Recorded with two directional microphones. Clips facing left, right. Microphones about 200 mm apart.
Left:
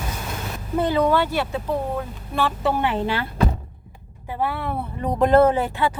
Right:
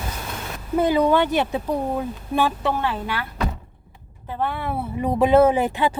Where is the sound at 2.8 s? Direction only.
25° left (ahead or behind).